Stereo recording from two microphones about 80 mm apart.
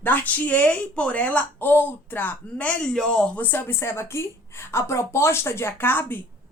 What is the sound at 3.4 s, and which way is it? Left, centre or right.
A woman's voice, left.